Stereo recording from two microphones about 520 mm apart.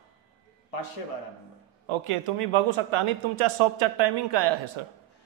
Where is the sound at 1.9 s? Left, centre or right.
Right.